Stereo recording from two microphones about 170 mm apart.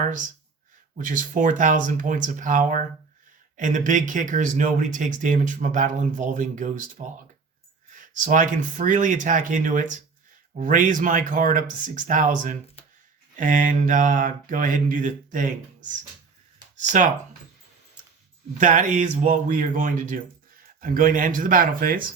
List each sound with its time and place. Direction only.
0.0 s speech: 50° right (ahead or behind)
7.9 s speech: 50° right (ahead or behind)
18.6 s speech: 50° right (ahead or behind)